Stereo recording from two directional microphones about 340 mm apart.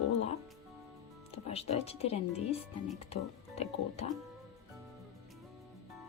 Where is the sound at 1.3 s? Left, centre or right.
Centre.